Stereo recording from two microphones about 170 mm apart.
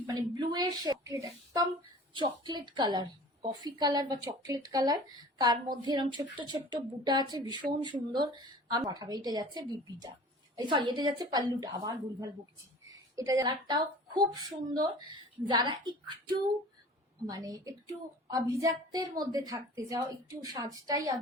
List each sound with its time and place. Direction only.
0.0 s a woman's voice: 25° right (ahead or behind)
17.2 s a woman's voice: 20° right (ahead or behind)